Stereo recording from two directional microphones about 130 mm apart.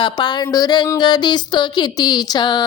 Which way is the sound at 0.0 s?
35° left (ahead or behind).